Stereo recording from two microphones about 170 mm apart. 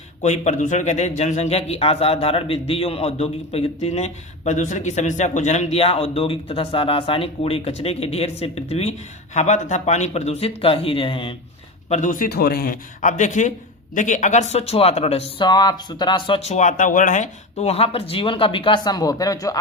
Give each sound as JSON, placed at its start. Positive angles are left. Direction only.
{"t": 0.2, "sound": "a man's voice", "side_deg": 40}
{"t": 11.9, "sound": "a man's voice", "side_deg": 50}